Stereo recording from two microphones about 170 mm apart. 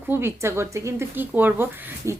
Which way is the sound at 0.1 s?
15° right (ahead or behind).